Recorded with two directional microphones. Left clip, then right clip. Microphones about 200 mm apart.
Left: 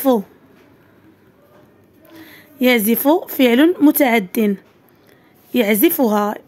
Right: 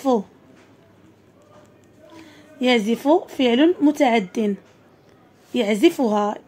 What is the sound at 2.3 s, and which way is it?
A woman's voice, 30° left (ahead or behind).